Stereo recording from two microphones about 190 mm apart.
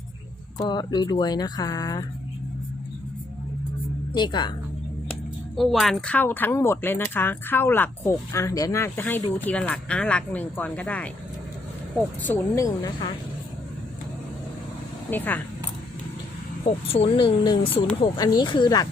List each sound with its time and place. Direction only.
0.6 s speech: 20° left (ahead or behind)
4.1 s speech: 25° left (ahead or behind)
5.5 s speech: centre (ahead or behind); by 13.1 s 20° left (ahead or behind)
15.1 s speech: 10° left (ahead or behind)
16.6 s speech: 30° left (ahead or behind)